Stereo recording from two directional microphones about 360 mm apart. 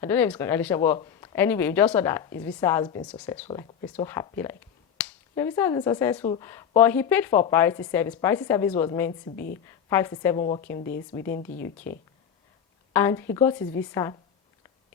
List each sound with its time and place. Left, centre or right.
0.0 s speech: centre
9.3 s a woman's voice: left
9.6 s speech: centre